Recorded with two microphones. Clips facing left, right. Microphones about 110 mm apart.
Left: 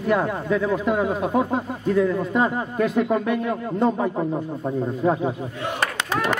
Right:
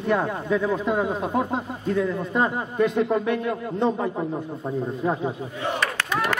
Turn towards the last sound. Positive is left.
turn(degrees=35)  # may be behind; listen again after turning